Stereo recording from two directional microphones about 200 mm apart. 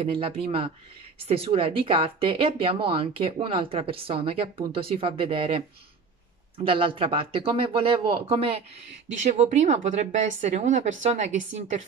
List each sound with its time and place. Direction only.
0.0 s speech: 25° right (ahead or behind)
6.6 s speech: 25° right (ahead or behind)